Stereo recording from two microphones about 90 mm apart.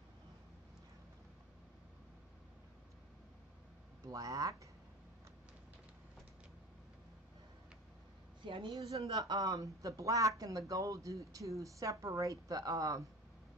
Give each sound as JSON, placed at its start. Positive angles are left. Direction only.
{"t": 4.0, "sound": "speech", "side_deg": -40}
{"t": 8.5, "sound": "a woman's voice", "side_deg": -65}
{"t": 8.9, "sound": "speech", "side_deg": -45}